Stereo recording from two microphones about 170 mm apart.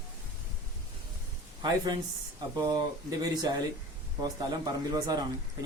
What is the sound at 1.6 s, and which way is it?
Speech, 25° right (ahead or behind).